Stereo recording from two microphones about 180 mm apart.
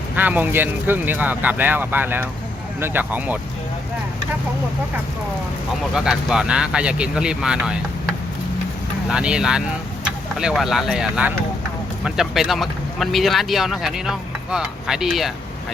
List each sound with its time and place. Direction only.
0.2 s speech: 10° right (ahead or behind)
6.1 s speech: 5° right (ahead or behind)
9.0 s speech: 5° right (ahead or behind)